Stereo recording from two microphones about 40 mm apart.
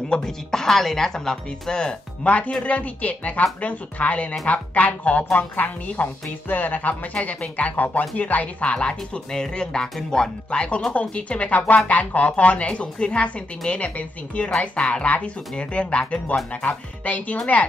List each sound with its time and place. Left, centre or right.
0.1 s speech: centre
2.2 s speech: left
8.6 s speech: left
9.3 s speech: centre
10.9 s speech: left